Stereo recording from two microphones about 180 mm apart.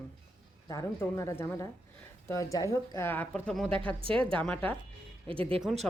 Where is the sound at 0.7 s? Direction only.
20° left (ahead or behind).